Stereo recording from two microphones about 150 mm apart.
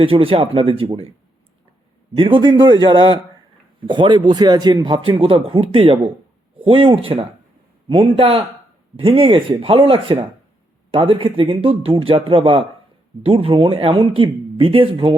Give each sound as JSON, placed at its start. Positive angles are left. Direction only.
{"t": 0.0, "sound": "a man's voice", "side_deg": -35}
{"t": 2.1, "sound": "a man's voice", "side_deg": -35}